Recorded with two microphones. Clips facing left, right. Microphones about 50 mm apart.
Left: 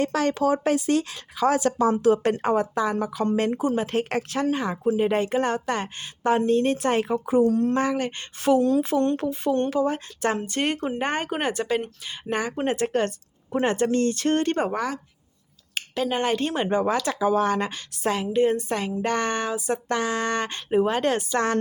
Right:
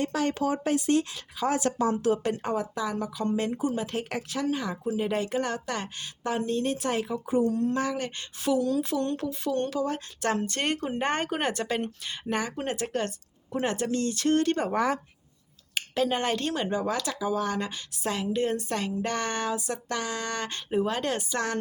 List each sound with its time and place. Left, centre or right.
0.0 s a woman's voice: left
2.2 s a woman's voice: left
7.3 s speech: left
7.7 s speech: left
8.4 s speech: left; by 10.6 s centre
10.6 s speech: centre
12.3 s speech: centre
12.6 s speech: left
15.7 s a sound: centre
16.1 s speech: centre; by 17.0 s left
17.1 s a woman's voice: left
17.5 s speech: left
18.2 s speech: left